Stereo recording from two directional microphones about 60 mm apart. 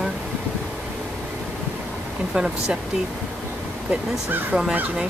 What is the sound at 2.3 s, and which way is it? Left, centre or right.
Speech, centre.